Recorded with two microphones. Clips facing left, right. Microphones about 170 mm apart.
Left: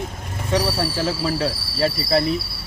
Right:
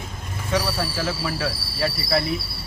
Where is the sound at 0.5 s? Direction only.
30° left (ahead or behind).